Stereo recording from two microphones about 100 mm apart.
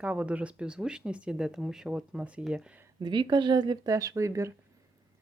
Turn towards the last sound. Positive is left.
turn(degrees=-30)  # may be behind; listen again after turning